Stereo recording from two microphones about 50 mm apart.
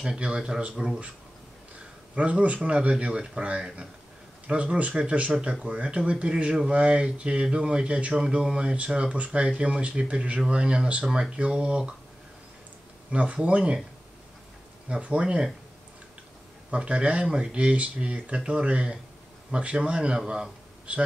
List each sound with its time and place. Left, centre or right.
0.0 s speech: centre
2.1 s speech: right
11.3 s speech: right
13.1 s speech: right
15.0 s speech: right
16.7 s speech: right